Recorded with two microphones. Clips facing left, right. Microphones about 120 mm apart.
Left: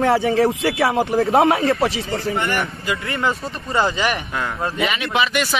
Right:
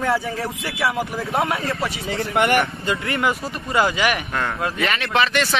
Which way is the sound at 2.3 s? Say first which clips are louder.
Right 7 dB; 65° right (ahead or behind).